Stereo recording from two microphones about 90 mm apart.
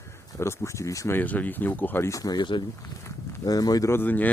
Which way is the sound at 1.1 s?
20° left (ahead or behind).